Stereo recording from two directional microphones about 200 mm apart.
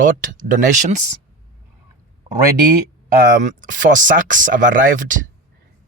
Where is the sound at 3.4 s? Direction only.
40° right (ahead or behind).